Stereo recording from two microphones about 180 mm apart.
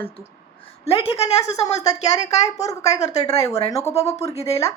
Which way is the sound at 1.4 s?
15° left (ahead or behind).